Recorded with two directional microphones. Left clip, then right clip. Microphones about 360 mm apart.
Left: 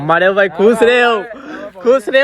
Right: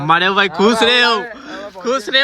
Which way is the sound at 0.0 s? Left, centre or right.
Centre.